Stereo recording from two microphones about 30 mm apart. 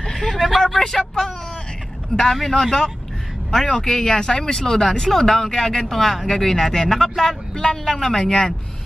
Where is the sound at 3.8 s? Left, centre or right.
Centre.